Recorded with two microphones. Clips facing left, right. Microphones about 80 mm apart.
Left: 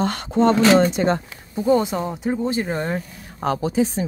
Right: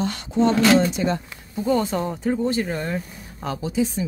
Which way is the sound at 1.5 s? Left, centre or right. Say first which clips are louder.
Left 3 dB; left.